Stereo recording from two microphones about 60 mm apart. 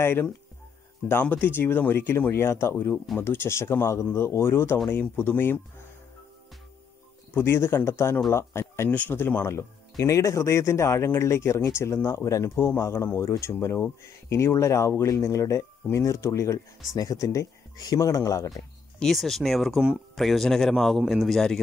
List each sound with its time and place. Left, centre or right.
0.0 s speech: left
7.3 s speech: left
12.3 s speech: left
12.5 s speech: left
16.9 s speech: left
18.9 s a man's voice: centre